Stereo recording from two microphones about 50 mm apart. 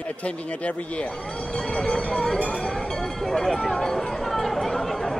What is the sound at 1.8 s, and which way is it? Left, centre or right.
Speech, centre.